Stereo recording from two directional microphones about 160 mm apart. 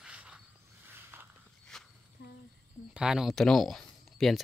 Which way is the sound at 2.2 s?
90° left.